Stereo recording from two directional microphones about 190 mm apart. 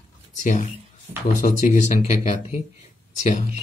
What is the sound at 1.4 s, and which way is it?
Speech, 40° left (ahead or behind).